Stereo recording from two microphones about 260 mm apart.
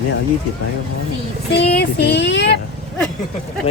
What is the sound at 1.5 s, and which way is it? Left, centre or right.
Female singing, left.